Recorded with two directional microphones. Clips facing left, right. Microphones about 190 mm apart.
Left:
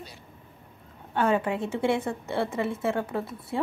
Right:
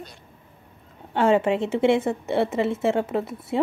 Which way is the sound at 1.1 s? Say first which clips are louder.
Right 5 dB; 25° right (ahead or behind).